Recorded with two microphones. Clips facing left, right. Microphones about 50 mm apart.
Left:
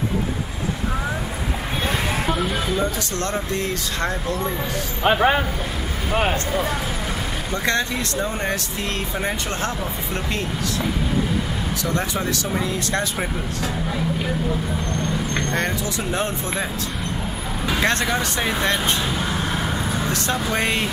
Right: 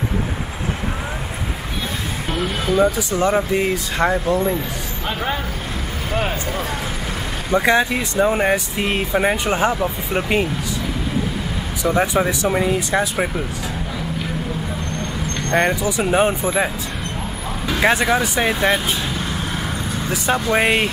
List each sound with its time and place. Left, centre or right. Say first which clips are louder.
2.3 s speech: right 1 dB; centre
2.7 s speech: right 6 dB; centre
5.1 s speech: left 6 dB; left
6.1 s speech: left 2 dB; centre
7.5 s speech: right 7 dB; centre
11.8 s speech: right 8 dB; centre
12.7 s speech: right 4 dB; centre
15.5 s speech: right 6 dB; centre
17.6 s speech: right 4 dB; centre
19.1 s vehicle: left 1 dB; centre
20.5 s speech: right 6 dB; centre